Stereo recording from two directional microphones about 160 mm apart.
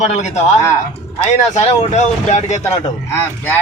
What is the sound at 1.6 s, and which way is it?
Speech, 45° left (ahead or behind).